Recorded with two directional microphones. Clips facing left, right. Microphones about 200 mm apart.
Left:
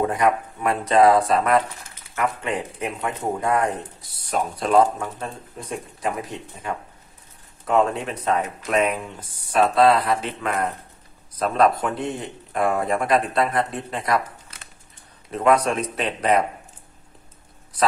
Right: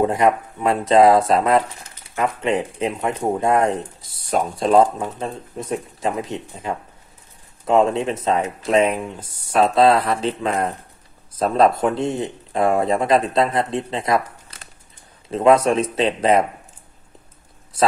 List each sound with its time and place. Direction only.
0.0 s speech: 25° right (ahead or behind)
4.9 s speech: 20° right (ahead or behind)